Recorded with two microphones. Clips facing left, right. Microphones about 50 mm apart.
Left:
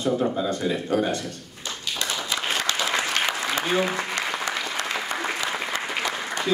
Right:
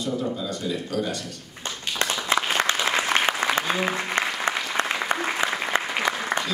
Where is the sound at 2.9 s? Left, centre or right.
Right.